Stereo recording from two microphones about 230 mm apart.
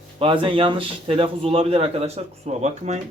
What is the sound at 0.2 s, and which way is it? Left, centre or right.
A man's voice, right.